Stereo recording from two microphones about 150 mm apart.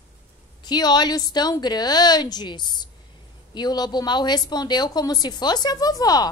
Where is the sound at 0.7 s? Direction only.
30° left (ahead or behind).